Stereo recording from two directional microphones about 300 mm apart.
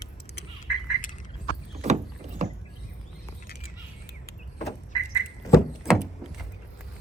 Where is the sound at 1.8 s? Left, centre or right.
Right.